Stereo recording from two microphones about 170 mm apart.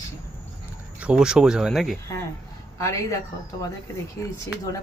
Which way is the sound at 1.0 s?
5° right (ahead or behind).